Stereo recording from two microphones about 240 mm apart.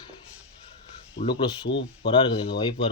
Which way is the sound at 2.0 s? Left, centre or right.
Left.